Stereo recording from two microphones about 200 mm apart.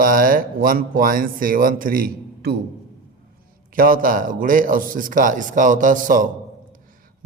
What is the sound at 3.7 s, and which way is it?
Speech, 45° right (ahead or behind).